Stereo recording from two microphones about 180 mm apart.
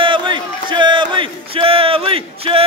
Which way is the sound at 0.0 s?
30° right (ahead or behind).